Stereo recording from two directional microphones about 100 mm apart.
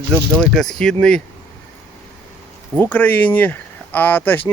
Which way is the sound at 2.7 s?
15° left (ahead or behind).